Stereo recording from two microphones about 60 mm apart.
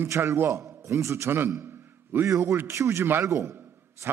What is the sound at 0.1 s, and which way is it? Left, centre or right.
A man's voice, right.